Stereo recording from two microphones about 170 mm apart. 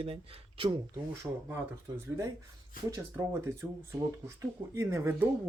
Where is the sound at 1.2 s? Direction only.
10° right (ahead or behind).